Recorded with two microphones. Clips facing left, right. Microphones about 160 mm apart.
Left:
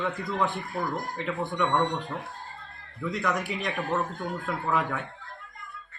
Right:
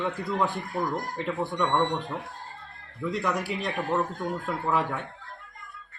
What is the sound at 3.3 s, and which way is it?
Speech, 30° right (ahead or behind).